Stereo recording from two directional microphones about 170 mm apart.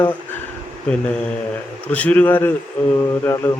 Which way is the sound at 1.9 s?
10° left (ahead or behind).